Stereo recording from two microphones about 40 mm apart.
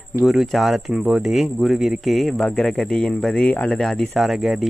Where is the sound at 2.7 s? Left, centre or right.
Centre.